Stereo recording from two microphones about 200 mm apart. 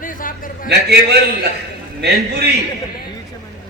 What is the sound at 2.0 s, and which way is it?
Speech, 55° right (ahead or behind).